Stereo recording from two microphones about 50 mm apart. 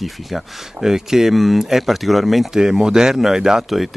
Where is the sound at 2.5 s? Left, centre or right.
Centre.